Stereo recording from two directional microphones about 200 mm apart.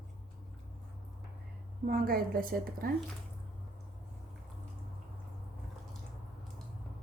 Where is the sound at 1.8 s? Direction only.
50° right (ahead or behind).